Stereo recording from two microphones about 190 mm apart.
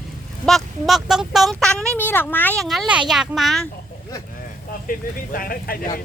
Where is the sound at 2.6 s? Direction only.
Centre (ahead or behind).